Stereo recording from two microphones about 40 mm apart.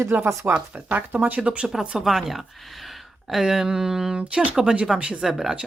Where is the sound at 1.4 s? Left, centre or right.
Right.